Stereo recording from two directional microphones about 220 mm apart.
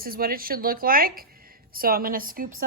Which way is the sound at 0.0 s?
40° right (ahead or behind).